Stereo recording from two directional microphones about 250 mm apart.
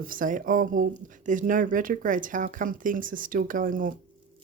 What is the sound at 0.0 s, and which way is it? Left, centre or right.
Speech, right.